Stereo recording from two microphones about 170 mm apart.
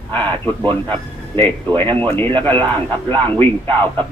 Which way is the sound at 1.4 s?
10° left (ahead or behind).